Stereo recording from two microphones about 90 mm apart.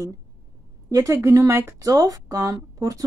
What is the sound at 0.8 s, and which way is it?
A woman's voice, 35° right (ahead or behind).